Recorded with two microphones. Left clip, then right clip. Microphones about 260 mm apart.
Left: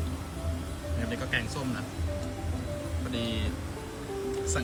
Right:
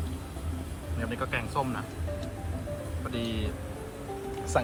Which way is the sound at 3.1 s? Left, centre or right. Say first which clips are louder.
Left 1 dB; centre.